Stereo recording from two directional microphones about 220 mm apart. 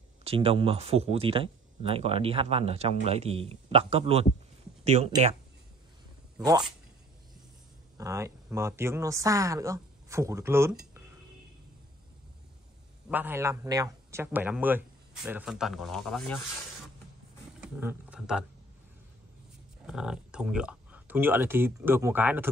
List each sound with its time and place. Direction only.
0.2 s speech: 25° right (ahead or behind)
6.3 s speech: 15° right (ahead or behind)
8.0 s speech: 15° right (ahead or behind)
13.1 s speech: 10° right (ahead or behind)
17.6 s speech: 5° right (ahead or behind)
19.9 s speech: 5° right (ahead or behind)